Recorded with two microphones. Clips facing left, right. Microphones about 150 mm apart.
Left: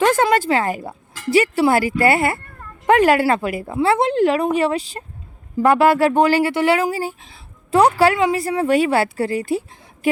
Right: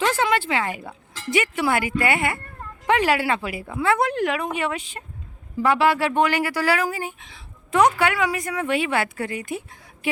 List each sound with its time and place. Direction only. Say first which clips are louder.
0.0 s speech: left 6 dB; 50° left (ahead or behind)
2.8 s speech: left 6 dB; 45° left (ahead or behind)
3.8 s speech: left 5 dB; 25° left (ahead or behind)
5.5 s speech: left 5 dB; 45° left (ahead or behind)